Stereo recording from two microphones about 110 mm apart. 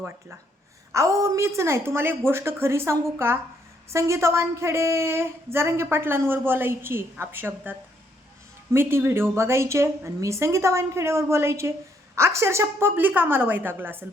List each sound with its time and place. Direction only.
0.9 s a woman's voice: 25° right (ahead or behind)